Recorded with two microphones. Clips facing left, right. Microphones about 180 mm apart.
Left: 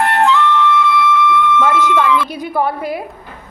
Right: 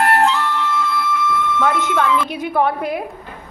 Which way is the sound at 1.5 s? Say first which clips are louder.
Left 3 dB; centre (ahead or behind).